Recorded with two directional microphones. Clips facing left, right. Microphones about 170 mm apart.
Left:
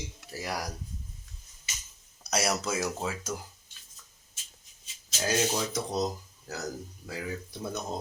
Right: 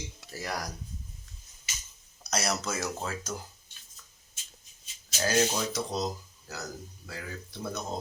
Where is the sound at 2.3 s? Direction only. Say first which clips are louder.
Left 2 dB; 5° left (ahead or behind).